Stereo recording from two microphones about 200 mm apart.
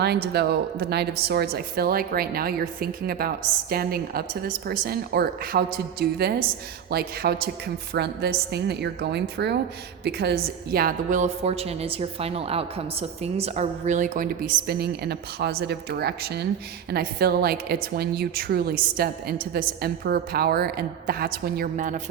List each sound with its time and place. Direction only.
0.0 s a woman's voice: 55° right (ahead or behind)